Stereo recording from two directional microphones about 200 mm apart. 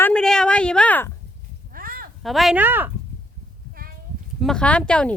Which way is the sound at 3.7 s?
45° right (ahead or behind).